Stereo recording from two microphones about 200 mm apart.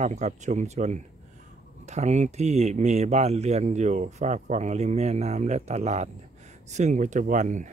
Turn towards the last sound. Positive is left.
turn(degrees=-40)  # may be behind; listen again after turning